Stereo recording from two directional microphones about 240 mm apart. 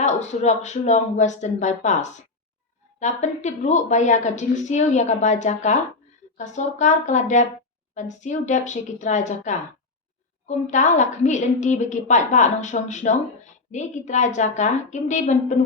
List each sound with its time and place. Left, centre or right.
0.0 s a woman's voice: left